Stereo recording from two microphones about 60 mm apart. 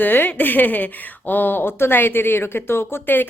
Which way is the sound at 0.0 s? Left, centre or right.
Left.